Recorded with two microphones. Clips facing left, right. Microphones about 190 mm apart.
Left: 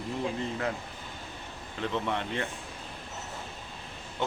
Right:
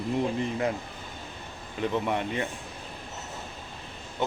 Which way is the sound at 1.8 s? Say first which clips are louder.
Right 4 dB; 10° right (ahead or behind).